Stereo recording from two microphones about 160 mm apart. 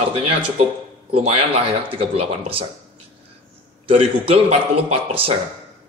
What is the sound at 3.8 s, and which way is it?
Speech, 35° right (ahead or behind).